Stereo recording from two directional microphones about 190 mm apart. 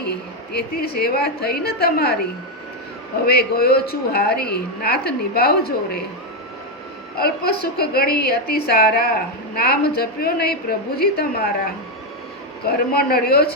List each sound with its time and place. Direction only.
0.5 s a woman's voice: 55° left (ahead or behind)
3.2 s a woman's voice: 55° left (ahead or behind)
7.2 s a woman's voice: 55° left (ahead or behind)